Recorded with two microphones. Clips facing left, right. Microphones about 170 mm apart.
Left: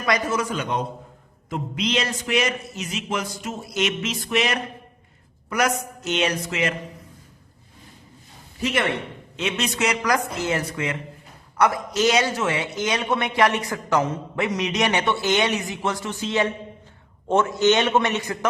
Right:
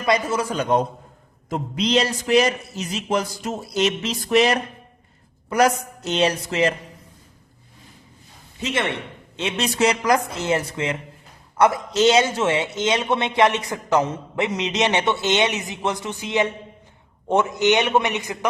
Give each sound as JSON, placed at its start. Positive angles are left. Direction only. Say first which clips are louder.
{"t": 0.0, "sound": "a man's voice", "louder": "right 2 dB", "side_deg": -25}
{"t": 8.5, "sound": "a man's voice", "louder": "left 1 dB", "side_deg": -25}